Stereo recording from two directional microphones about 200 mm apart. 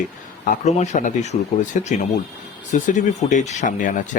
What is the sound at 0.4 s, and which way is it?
Speech, 40° left (ahead or behind).